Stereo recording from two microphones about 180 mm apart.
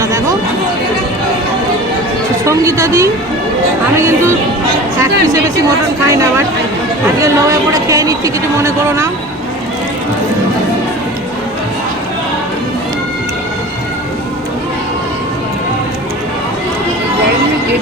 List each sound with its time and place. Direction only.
0.0 s speech: 20° right (ahead or behind)
2.4 s speech: 15° right (ahead or behind)
6.1 s speech: 15° right (ahead or behind)